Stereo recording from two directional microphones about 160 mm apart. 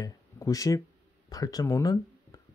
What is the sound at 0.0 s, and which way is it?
Speech, 20° left (ahead or behind).